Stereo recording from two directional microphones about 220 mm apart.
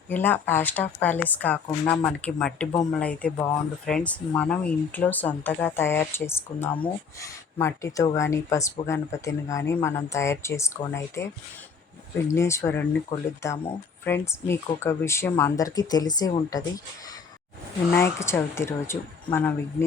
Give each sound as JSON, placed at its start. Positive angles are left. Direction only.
{"t": 0.1, "sound": "speech", "side_deg": 10}
{"t": 17.9, "sound": "speech", "side_deg": 10}